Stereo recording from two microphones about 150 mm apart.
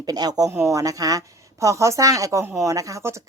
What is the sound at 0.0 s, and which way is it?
Speech, 25° right (ahead or behind).